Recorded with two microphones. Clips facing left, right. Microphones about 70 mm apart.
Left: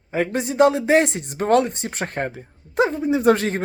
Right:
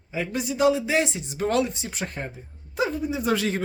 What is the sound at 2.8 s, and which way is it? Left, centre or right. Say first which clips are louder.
Speech: left 8 dB; left.